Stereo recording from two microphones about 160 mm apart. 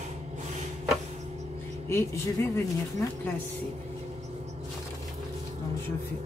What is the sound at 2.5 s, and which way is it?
Speech, 15° left (ahead or behind).